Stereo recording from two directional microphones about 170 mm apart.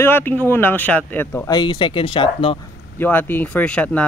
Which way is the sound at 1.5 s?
25° left (ahead or behind).